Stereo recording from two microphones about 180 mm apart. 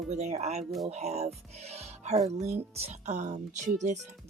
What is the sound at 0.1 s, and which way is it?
Speech, 40° right (ahead or behind).